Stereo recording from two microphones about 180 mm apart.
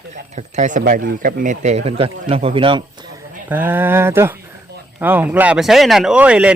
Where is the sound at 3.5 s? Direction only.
10° right (ahead or behind).